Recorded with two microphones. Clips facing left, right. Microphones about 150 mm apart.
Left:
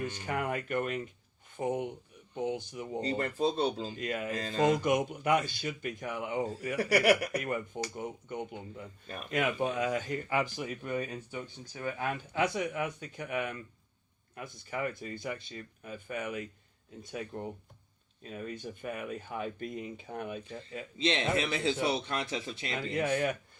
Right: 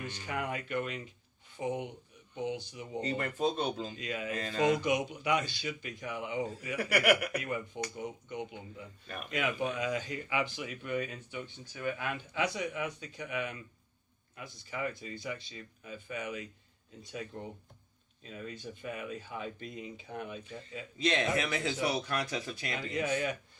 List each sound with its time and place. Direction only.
0.0 s speech: 50° left (ahead or behind)
3.0 s speech: 35° left (ahead or behind)
3.9 s speech: 50° left (ahead or behind)
4.3 s speech: 35° left (ahead or behind)
20.5 s a man's voice: 30° left (ahead or behind)
23.0 s speech: 55° left (ahead or behind)